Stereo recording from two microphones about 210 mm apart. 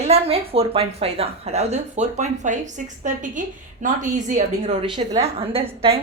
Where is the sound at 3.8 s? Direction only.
35° right (ahead or behind).